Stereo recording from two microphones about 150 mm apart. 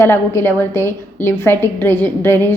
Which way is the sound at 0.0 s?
15° left (ahead or behind).